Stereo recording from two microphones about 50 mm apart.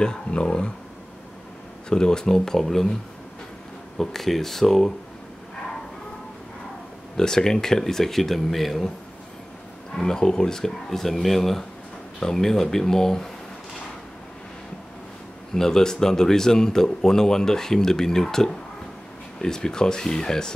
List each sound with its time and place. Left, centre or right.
0.0 s speech: centre
1.9 s speech: centre
4.0 s speech: centre
7.2 s speech: centre
9.9 s speech: centre
15.5 s speech: centre